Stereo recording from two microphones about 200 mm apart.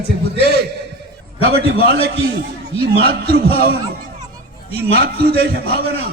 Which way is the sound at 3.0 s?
50° right (ahead or behind).